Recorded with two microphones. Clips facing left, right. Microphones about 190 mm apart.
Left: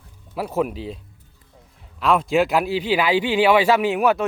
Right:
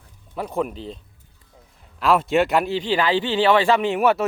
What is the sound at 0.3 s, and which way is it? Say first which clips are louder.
Speech: left 2 dB; 5° left (ahead or behind).